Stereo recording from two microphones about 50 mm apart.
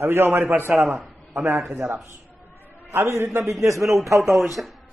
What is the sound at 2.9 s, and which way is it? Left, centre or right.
Speech, right.